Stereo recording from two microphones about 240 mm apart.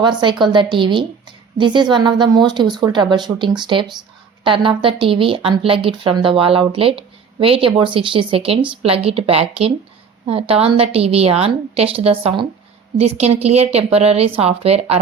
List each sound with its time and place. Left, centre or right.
0.0 s a woman's voice: centre